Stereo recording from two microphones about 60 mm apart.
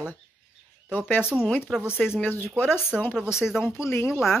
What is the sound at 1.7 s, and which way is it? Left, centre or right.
Speech, centre.